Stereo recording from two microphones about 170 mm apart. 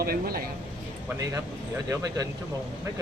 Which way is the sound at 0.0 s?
60° right (ahead or behind).